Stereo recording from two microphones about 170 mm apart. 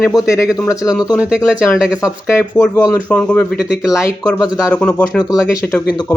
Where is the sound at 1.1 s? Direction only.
5° right (ahead or behind).